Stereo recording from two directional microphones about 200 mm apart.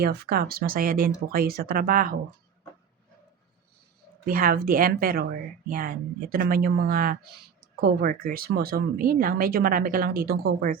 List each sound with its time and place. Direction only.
0.0 s speech: 50° right (ahead or behind)
4.3 s speech: 45° right (ahead or behind)